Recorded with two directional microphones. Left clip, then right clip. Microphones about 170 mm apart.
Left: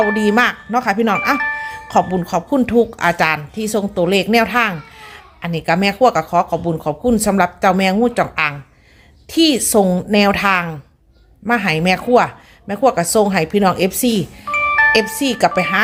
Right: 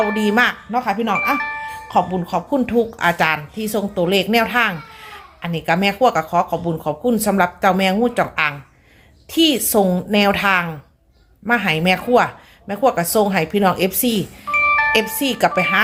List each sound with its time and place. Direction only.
0.1 s speech: 20° left (ahead or behind)
0.7 s speech: 30° left (ahead or behind)
14.5 s music: 35° left (ahead or behind)
14.9 s speech: 15° left (ahead or behind)